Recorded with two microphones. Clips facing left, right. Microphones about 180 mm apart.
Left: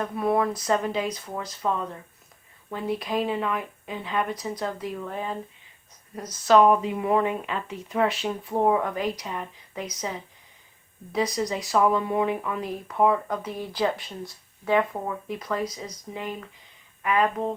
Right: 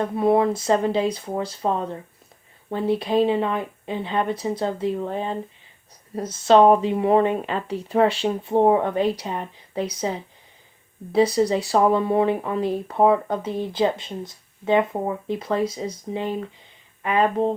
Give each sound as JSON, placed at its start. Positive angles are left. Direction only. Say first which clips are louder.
{"t": 0.0, "sound": "speech", "louder": "right 5 dB", "side_deg": -25}